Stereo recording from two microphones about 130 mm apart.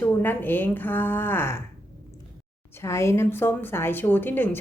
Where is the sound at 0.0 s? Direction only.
15° left (ahead or behind).